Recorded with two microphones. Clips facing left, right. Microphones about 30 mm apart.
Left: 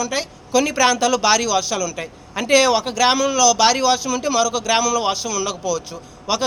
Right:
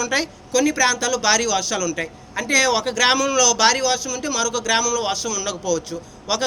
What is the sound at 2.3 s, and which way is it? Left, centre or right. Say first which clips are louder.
Speech: left 3 dB; left.